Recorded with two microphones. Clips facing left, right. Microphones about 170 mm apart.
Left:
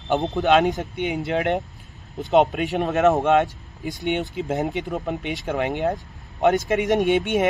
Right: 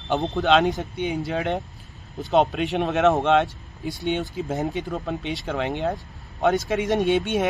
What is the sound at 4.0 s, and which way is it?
Speech, 20° left (ahead or behind).